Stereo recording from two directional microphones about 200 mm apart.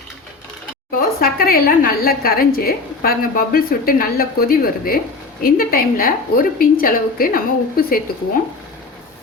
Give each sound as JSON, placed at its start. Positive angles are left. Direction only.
{"t": 0.9, "sound": "a woman's voice", "side_deg": 45}